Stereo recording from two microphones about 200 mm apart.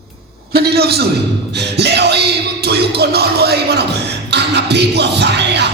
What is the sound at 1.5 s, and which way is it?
Music, 55° right (ahead or behind).